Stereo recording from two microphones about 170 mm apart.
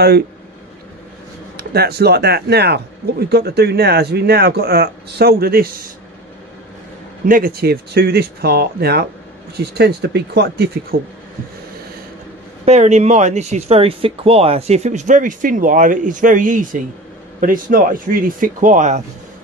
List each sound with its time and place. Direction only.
1.6 s speech: 70° right (ahead or behind)
7.2 s speech: 55° right (ahead or behind); by 11.0 s 75° right (ahead or behind)
12.6 s speech: 40° right (ahead or behind)